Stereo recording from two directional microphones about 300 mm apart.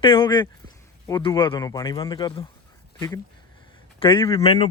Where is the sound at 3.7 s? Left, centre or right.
Centre.